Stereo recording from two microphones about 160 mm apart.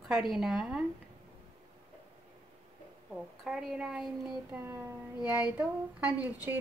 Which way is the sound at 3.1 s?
5° right (ahead or behind).